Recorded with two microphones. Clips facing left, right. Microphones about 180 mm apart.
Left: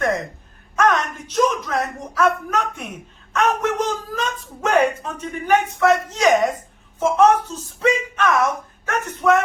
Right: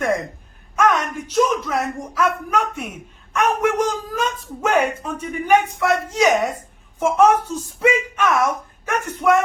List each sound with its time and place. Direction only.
0.8 s a woman's voice: 10° right (ahead or behind)